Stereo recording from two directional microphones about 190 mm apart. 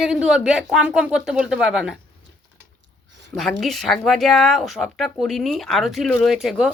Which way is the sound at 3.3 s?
Centre (ahead or behind).